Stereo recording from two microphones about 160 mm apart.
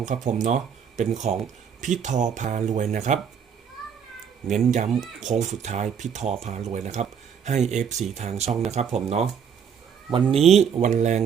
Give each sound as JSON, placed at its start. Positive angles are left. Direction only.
{"t": 0.0, "sound": "speech", "side_deg": -50}
{"t": 4.4, "sound": "speech", "side_deg": -50}
{"t": 10.6, "sound": "speech", "side_deg": -45}